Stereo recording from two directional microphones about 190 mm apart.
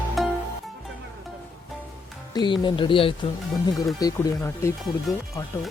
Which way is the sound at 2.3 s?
25° left (ahead or behind).